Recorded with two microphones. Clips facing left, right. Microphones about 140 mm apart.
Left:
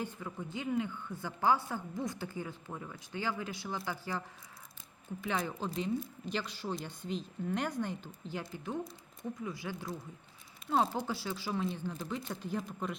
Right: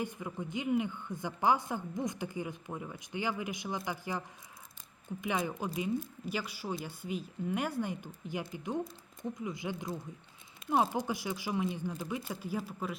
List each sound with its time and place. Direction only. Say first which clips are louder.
0.0 s a woman's voice: right 2 dB; 15° right (ahead or behind)
5.2 s a woman's voice: right 1 dB; 15° right (ahead or behind)